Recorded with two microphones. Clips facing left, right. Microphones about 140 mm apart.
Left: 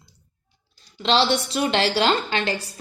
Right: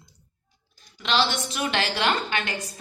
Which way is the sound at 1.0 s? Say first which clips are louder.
Left 5 dB; 30° left (ahead or behind).